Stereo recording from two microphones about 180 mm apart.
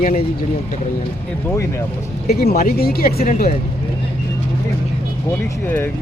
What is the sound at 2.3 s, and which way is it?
Speech, 60° left (ahead or behind).